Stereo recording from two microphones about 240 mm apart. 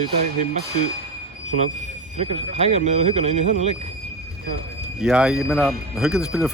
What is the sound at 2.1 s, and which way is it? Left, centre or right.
Speech, right.